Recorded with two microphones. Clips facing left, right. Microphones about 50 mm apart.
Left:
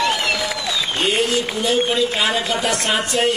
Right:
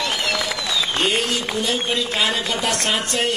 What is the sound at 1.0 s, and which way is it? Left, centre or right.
A man's voice, centre.